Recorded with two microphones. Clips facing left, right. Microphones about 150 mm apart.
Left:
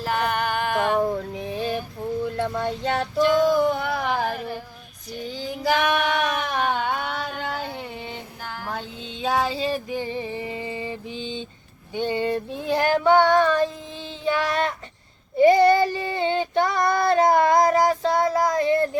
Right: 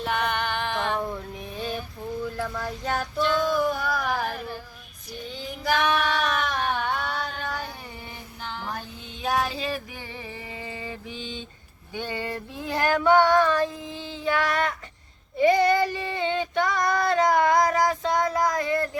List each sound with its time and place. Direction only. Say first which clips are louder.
0.0 s music: left 2 dB; 5° left (ahead or behind)
0.3 s female singing: left 4 dB; 45° left (ahead or behind)
2.2 s speech: left 6 dB; 25° left (ahead or behind)
3.5 s a sound: left 4 dB; 25° left (ahead or behind)
4.3 s female singing: left 4 dB; 50° left (ahead or behind)
5.4 s child singing: left 4 dB; 30° left (ahead or behind)
5.7 s child singing: left 1 dB; 15° left (ahead or behind)
6.1 s a sound: left 2 dB; 55° left (ahead or behind)
6.7 s a sound: left 2 dB; 20° left (ahead or behind)
9.2 s female singing: left 3 dB; 25° left (ahead or behind)
11.9 s child singing: left 7 dB; 20° left (ahead or behind)